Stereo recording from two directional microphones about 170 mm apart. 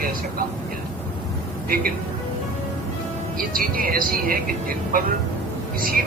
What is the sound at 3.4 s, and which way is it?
Speech, 55° right (ahead or behind).